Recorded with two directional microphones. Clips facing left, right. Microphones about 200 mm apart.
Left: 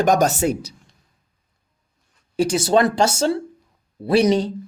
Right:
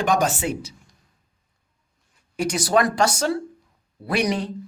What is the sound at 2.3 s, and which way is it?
Speech, 30° left (ahead or behind).